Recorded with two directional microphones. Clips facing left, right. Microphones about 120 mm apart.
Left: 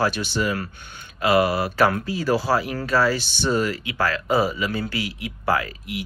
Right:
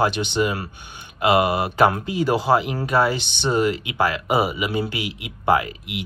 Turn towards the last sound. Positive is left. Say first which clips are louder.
# right 2 dB
turn(degrees=-20)  # may be behind; listen again after turning